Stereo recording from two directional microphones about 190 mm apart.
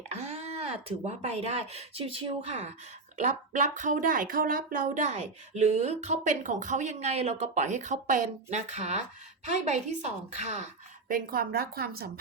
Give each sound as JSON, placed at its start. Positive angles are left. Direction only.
{"t": 0.1, "sound": "speech", "side_deg": -35}
{"t": 11.1, "sound": "a woman's voice", "side_deg": -50}